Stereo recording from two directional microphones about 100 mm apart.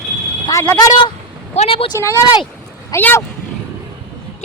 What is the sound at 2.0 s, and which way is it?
Speech, 25° left (ahead or behind).